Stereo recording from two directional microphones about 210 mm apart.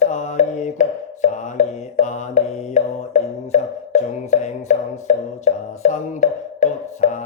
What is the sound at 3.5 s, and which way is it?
Music, 35° left (ahead or behind).